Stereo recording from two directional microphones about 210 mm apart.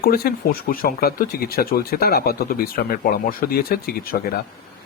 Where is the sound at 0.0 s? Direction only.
45° left (ahead or behind).